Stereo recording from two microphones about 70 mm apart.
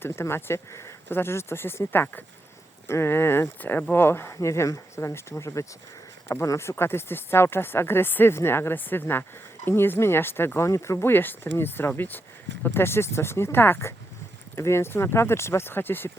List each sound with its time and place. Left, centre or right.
0.0 s speech: left
11.1 s speech: left